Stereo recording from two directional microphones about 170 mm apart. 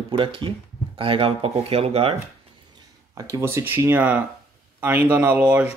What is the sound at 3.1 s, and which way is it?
Speech, 15° right (ahead or behind).